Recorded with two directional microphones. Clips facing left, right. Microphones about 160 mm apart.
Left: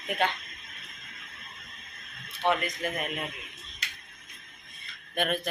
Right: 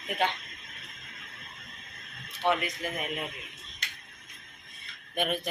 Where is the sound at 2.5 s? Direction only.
5° right (ahead or behind).